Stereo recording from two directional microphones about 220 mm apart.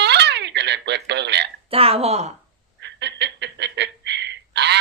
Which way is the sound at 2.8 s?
50° right (ahead or behind).